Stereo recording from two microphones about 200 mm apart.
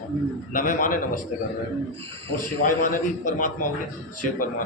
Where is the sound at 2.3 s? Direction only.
45° left (ahead or behind).